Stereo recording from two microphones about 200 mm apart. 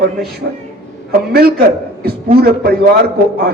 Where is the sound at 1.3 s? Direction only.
50° right (ahead or behind).